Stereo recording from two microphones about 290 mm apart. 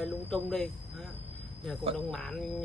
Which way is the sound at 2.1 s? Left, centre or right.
Centre.